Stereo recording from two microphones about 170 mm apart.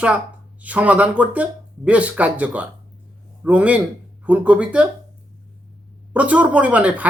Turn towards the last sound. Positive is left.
turn(degrees=-10)  # may be behind; listen again after turning